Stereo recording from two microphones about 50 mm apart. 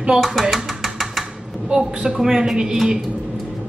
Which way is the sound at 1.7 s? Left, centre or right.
Centre.